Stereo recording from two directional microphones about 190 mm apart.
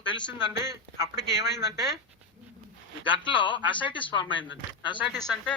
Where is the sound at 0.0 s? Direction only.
25° left (ahead or behind).